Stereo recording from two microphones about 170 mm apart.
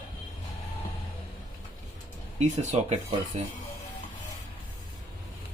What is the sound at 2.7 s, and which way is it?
Speech, 40° right (ahead or behind).